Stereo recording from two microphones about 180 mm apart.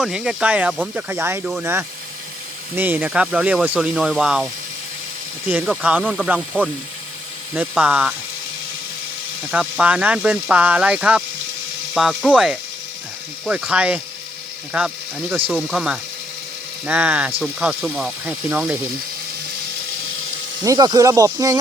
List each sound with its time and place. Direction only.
0.0 s speech: 5° right (ahead or behind)
5.5 s speech: 5° right (ahead or behind)
9.5 s speech: 5° right (ahead or behind)
20.7 s speech: 20° right (ahead or behind)